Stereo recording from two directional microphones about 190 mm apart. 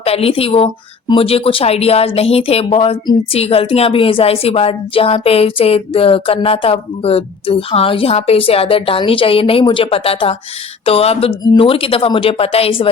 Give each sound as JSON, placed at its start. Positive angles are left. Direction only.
{"t": 0.0, "sound": "a woman's voice", "side_deg": 30}